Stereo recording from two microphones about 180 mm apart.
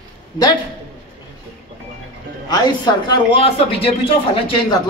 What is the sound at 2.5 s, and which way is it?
A man's voice, 25° left (ahead or behind).